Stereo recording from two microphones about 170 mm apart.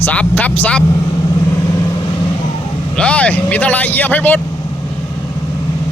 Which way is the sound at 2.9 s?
5° left (ahead or behind).